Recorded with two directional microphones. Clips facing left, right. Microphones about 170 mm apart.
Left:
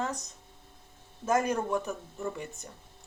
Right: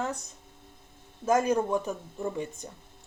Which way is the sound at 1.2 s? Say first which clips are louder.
Right 3 dB; 15° right (ahead or behind).